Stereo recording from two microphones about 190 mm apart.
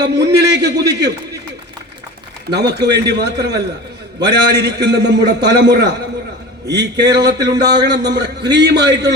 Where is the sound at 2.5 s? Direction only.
60° right (ahead or behind).